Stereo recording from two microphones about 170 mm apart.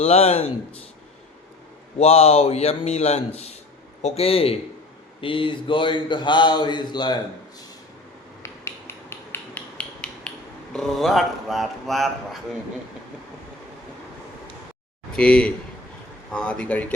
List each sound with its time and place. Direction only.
0.0 s a man's voice: 35° left (ahead or behind)
2.0 s a man's voice: 40° left (ahead or behind)
8.4 s hammer: 15° left (ahead or behind)
15.1 s speech: 5° left (ahead or behind)